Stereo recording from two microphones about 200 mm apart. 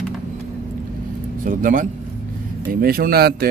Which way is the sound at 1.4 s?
40° right (ahead or behind).